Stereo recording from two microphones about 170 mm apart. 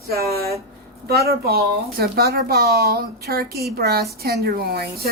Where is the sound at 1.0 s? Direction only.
65° right (ahead or behind).